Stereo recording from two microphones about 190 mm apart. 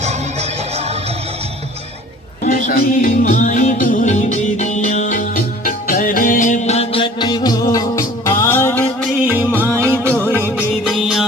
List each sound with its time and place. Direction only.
0.0 s music: 35° right (ahead or behind)
2.6 s music: 50° left (ahead or behind); by 9.0 s 10° left (ahead or behind)
9.2 s music: 10° right (ahead or behind)
10.8 s music: centre (ahead or behind)